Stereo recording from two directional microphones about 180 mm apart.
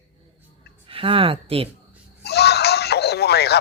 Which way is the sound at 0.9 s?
30° right (ahead or behind).